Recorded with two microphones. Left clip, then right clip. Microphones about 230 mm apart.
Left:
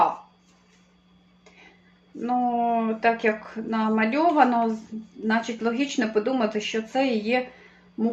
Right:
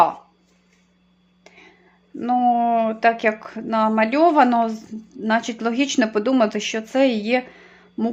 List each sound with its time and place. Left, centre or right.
2.1 s speech: right